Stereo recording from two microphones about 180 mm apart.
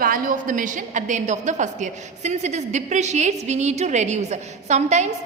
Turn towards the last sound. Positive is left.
turn(degrees=-40)  # may be behind; listen again after turning